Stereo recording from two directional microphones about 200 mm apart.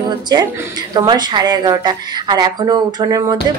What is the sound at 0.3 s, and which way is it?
Speech, 20° right (ahead or behind).